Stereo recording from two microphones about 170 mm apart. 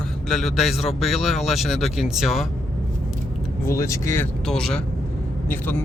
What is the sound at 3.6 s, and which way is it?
Speech, 15° left (ahead or behind).